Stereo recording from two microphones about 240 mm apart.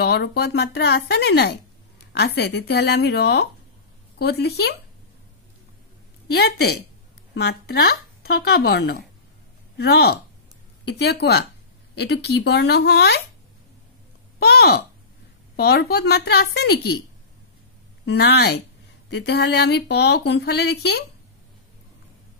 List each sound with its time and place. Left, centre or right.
0.0 s speech: left
6.3 s speech: left
14.4 s speech: left
18.0 s speech: left